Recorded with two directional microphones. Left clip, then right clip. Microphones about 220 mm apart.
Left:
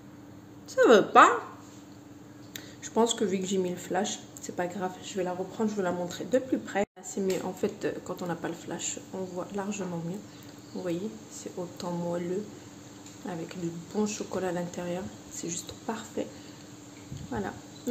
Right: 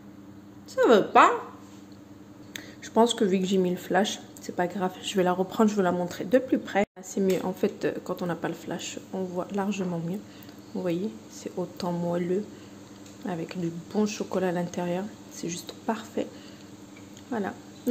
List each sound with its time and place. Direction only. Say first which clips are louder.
0.7 s a woman's voice: even; 5° right (ahead or behind)
2.5 s speech: right 4 dB; 15° right (ahead or behind)
5.0 s a woman's voice: right 11 dB; 35° right (ahead or behind)
5.9 s a woman's voice: right 4 dB; 20° right (ahead or behind)
11.4 s a woman's voice: right 4 dB; 20° right (ahead or behind)
17.3 s speech: right 3 dB; 20° right (ahead or behind)